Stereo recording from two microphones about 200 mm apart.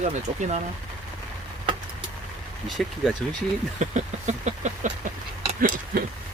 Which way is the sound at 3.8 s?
35° right (ahead or behind).